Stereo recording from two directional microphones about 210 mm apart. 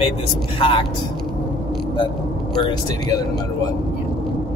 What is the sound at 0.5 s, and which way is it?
Speech, 25° left (ahead or behind).